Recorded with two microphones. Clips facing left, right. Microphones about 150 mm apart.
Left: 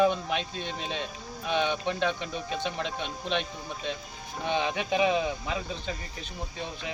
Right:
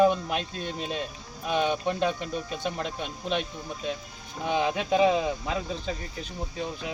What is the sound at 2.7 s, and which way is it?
Speech, 5° right (ahead or behind).